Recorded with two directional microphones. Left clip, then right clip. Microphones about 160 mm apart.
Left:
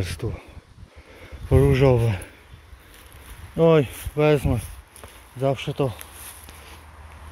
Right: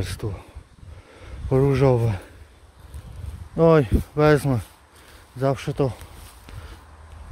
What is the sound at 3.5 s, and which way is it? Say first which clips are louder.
Speech: right 1 dB; 25° right (ahead or behind).